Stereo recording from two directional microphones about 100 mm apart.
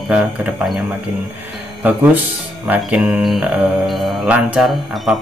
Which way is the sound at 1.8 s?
20° right (ahead or behind).